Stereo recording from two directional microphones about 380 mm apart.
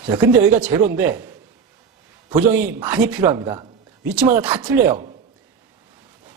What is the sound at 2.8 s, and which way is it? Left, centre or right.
Speech, centre.